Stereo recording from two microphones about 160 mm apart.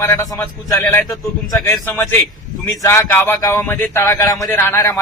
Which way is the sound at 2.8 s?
15° left (ahead or behind).